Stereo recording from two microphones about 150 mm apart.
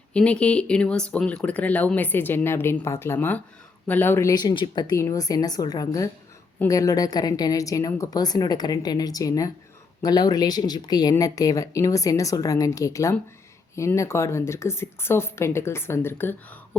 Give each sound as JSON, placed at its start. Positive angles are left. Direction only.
{"t": 0.1, "sound": "speech", "side_deg": 5}